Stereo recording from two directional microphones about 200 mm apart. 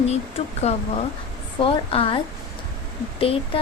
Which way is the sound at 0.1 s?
30° left (ahead or behind).